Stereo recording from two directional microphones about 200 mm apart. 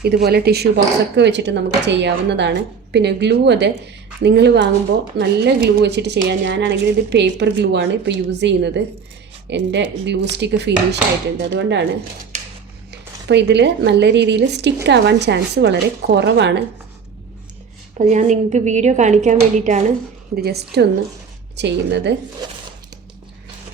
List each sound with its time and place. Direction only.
0.0 s a woman's voice: 50° right (ahead or behind)
12.9 s a woman's voice: 60° right (ahead or behind)
17.9 s a woman's voice: 35° right (ahead or behind)
20.3 s a woman's voice: 50° right (ahead or behind)